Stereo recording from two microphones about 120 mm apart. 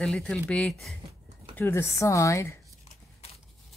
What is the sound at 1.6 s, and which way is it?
Speech, 20° left (ahead or behind).